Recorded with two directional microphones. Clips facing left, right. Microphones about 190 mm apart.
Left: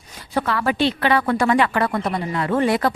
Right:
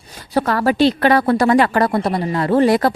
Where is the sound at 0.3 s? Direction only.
40° right (ahead or behind).